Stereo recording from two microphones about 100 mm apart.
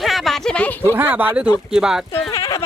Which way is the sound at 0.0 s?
Centre (ahead or behind).